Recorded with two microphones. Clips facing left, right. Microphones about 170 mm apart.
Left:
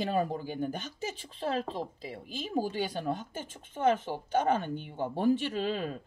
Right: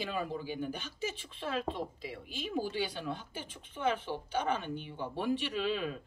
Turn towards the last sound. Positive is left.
turn(degrees=40)  # may be behind; listen again after turning